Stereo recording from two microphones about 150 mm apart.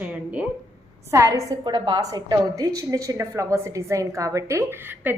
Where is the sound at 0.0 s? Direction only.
10° right (ahead or behind).